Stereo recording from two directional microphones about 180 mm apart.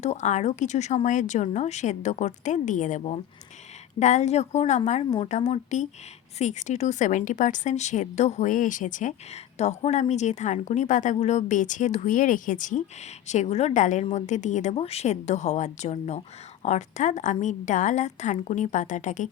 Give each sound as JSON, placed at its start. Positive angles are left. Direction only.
{"t": 0.0, "sound": "a woman's voice", "side_deg": 40}